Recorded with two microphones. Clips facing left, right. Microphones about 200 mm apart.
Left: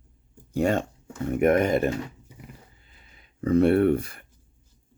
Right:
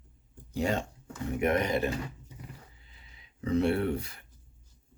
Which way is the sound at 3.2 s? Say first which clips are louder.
Left 7 dB; 55° left (ahead or behind).